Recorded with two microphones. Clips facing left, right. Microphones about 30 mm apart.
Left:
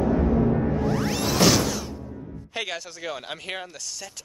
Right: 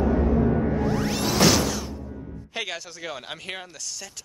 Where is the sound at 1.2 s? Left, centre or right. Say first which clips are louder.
Even; centre.